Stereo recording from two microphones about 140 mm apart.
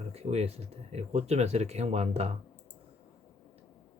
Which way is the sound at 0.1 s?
50° right (ahead or behind).